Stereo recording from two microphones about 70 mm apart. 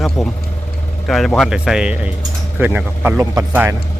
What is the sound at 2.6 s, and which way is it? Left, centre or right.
Speech, right.